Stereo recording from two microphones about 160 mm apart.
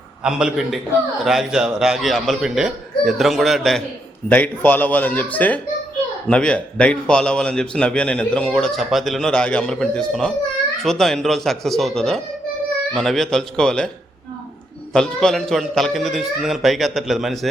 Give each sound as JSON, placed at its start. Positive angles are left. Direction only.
{"t": 0.2, "sound": "a man's voice", "side_deg": -5}
{"t": 14.9, "sound": "a man's voice", "side_deg": 5}